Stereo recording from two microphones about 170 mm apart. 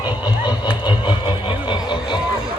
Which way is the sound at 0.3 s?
25° left (ahead or behind).